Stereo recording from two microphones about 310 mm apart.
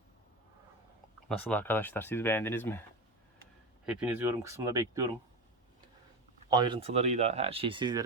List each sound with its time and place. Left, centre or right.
1.3 s speech: centre
3.8 s speech: centre
6.5 s speech: centre